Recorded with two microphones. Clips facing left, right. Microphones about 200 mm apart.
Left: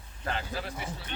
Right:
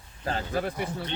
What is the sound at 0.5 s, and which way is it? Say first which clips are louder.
Speech: right 7 dB; 55° right (ahead or behind).